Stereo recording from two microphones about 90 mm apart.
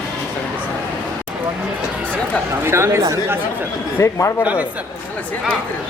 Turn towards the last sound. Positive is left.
turn(degrees=30)  # may be behind; listen again after turning